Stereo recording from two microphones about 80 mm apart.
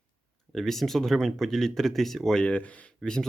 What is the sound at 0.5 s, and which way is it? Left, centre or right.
Speech, centre.